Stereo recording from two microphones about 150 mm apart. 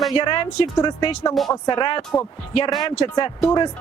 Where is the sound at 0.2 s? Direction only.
30° left (ahead or behind).